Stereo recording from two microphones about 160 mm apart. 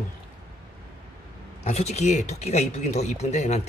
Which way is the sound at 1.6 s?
45° left (ahead or behind).